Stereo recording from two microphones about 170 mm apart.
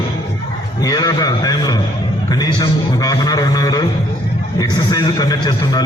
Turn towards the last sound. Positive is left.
turn(degrees=25)  # may be behind; listen again after turning